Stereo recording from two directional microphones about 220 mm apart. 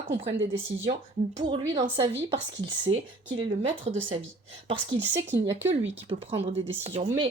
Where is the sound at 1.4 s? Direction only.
20° right (ahead or behind).